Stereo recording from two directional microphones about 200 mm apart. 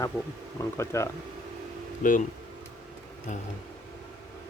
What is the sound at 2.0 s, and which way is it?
Speech, 40° left (ahead or behind).